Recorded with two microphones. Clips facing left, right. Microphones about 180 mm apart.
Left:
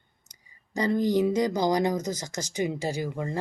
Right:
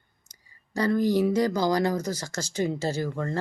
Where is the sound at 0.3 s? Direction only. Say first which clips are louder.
Right 1 dB; 20° left (ahead or behind).